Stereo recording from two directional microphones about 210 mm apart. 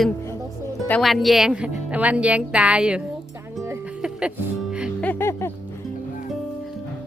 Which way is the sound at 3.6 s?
10° right (ahead or behind).